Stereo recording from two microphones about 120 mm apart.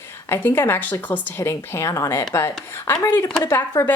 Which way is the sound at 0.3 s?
20° left (ahead or behind).